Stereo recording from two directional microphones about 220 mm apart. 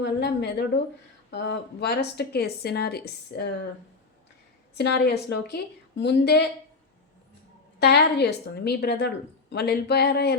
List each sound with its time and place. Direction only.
0.0 s a woman's voice: 45° left (ahead or behind)
4.7 s a woman's voice: 50° left (ahead or behind)
7.8 s a woman's voice: 45° left (ahead or behind)